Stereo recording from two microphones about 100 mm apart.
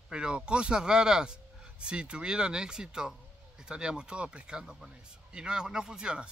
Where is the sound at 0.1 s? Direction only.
10° right (ahead or behind).